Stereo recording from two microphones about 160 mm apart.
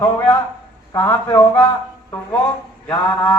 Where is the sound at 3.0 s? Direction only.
5° left (ahead or behind).